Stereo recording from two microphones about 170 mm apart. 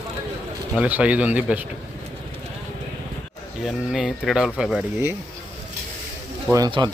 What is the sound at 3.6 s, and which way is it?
Speech, 5° right (ahead or behind).